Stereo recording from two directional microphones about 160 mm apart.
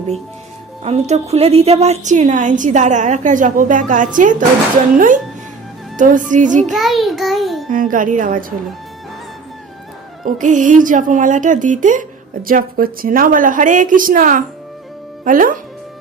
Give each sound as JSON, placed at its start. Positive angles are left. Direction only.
{"t": 0.9, "sound": "a woman's voice", "side_deg": -45}
{"t": 6.7, "sound": "a child's voice", "side_deg": 0}
{"t": 7.7, "sound": "speech", "side_deg": -55}
{"t": 10.2, "sound": "speech", "side_deg": -55}